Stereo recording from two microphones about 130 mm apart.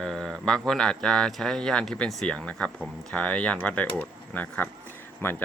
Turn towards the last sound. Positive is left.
turn(degrees=15)  # may be behind; listen again after turning